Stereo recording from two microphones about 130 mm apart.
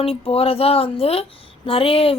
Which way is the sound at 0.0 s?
50° left (ahead or behind).